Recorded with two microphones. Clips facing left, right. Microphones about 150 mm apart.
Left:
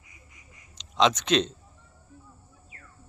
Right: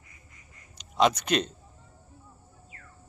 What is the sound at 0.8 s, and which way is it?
Speech, 10° right (ahead or behind).